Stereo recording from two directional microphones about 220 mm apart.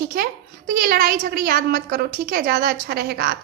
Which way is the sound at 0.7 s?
40° right (ahead or behind).